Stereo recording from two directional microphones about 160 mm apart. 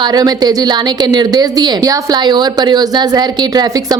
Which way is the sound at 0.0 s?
25° right (ahead or behind).